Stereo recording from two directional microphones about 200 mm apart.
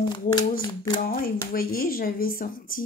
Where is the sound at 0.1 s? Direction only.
20° left (ahead or behind).